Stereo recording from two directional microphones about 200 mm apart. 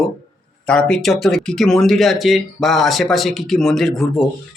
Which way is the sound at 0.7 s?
Centre (ahead or behind).